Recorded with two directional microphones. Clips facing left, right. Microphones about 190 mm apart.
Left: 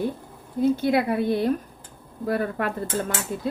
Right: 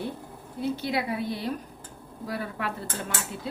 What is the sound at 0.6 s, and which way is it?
Speech, 50° left (ahead or behind).